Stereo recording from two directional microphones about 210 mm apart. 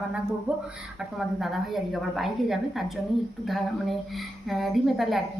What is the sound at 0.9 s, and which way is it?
A woman's voice, centre (ahead or behind).